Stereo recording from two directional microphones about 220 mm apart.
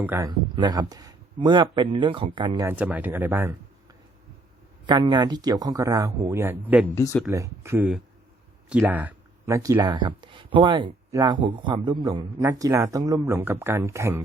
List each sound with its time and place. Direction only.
0.0 s speech: 10° right (ahead or behind)
2.6 s speech: 5° right (ahead or behind)
4.9 s speech: 20° right (ahead or behind)
6.8 s speech: 15° left (ahead or behind)
7.3 s speech: 15° right (ahead or behind)